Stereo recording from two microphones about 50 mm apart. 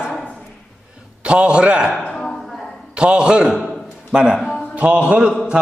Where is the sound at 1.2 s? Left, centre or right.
Right.